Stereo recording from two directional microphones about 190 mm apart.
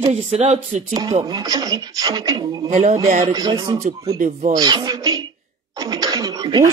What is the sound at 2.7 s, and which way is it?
Speech, 40° right (ahead or behind).